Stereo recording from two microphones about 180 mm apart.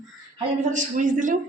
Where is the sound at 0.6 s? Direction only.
45° right (ahead or behind).